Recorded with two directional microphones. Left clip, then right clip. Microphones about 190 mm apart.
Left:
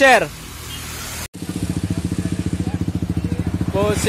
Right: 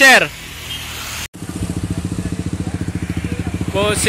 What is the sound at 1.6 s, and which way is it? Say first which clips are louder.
Vehicle: right 1 dB; 40° right (ahead or behind).